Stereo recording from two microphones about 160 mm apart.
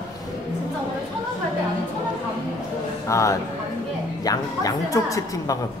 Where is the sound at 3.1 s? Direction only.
20° left (ahead or behind).